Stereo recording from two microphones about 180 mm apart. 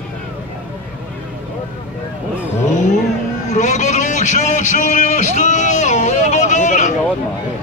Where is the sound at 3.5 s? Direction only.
40° left (ahead or behind).